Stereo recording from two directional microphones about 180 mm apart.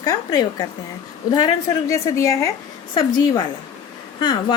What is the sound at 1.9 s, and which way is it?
Speech, 15° left (ahead or behind).